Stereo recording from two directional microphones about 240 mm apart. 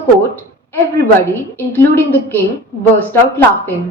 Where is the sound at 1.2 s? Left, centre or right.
Centre.